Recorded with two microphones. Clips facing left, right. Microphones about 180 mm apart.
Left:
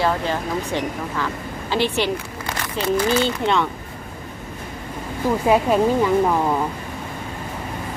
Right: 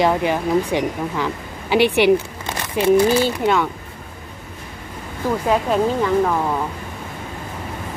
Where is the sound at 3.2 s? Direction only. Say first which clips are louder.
Right 2 dB; 5° right (ahead or behind).